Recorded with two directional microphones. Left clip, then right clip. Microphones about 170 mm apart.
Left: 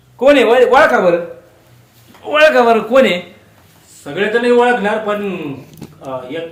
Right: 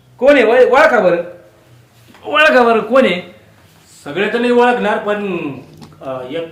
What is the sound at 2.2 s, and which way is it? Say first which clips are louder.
Speech: even; 5° left (ahead or behind).